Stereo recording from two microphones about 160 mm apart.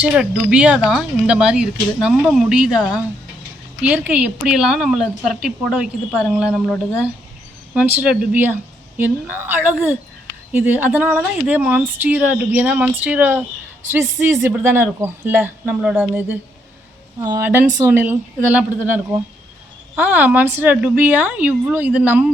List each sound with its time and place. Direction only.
0.0 s speech: 10° right (ahead or behind)
7.7 s a woman's voice: 10° right (ahead or behind)
17.2 s a woman's voice: 20° right (ahead or behind)